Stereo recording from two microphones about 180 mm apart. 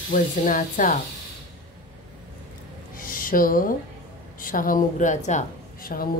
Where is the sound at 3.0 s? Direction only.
50° left (ahead or behind).